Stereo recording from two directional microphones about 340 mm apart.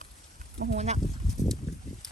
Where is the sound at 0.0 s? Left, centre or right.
Right.